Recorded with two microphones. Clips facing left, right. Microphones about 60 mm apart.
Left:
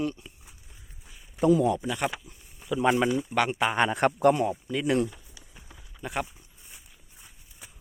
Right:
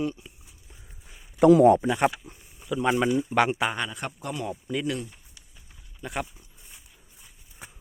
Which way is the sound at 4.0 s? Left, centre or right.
Left.